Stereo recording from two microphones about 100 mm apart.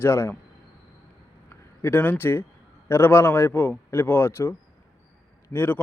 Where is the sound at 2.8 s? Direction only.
25° left (ahead or behind).